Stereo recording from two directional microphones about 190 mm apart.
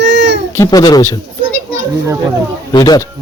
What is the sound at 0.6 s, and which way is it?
Speech, 20° left (ahead or behind).